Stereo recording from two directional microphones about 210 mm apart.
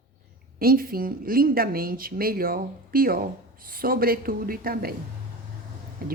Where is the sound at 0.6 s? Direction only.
45° right (ahead or behind).